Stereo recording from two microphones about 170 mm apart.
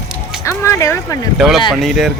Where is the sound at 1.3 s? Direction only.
Centre (ahead or behind).